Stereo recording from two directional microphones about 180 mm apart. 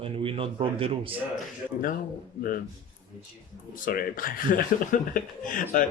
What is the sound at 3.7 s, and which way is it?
Speech, 50° left (ahead or behind).